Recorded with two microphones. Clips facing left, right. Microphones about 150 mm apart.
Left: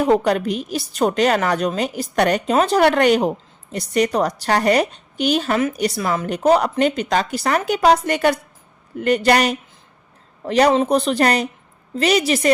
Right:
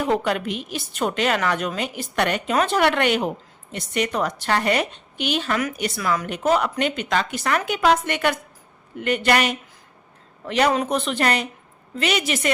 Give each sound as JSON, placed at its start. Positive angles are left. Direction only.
{"t": 0.0, "sound": "a woman's voice", "side_deg": 40}